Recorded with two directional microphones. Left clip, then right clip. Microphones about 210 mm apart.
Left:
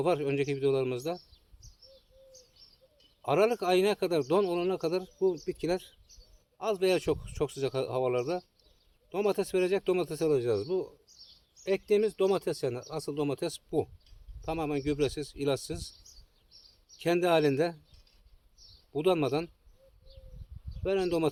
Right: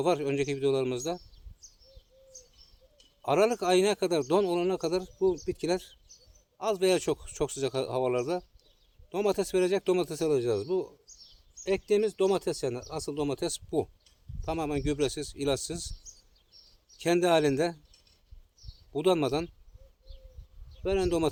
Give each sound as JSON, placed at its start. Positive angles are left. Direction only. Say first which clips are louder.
{"t": 0.0, "sound": "a man's voice", "louder": "right 1 dB", "side_deg": -25}
{"t": 3.2, "sound": "a man's voice", "louder": "right 1 dB", "side_deg": -25}
{"t": 17.0, "sound": "a man's voice", "louder": "right 1 dB", "side_deg": -25}
{"t": 18.9, "sound": "a man's voice", "louder": "right 1 dB", "side_deg": -25}
{"t": 20.8, "sound": "a man's voice", "louder": "right 1 dB", "side_deg": -25}